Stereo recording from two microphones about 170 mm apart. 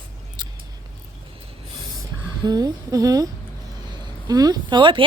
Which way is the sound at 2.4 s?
20° right (ahead or behind).